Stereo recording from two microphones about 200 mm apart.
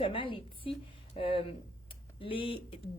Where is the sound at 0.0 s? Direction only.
25° left (ahead or behind).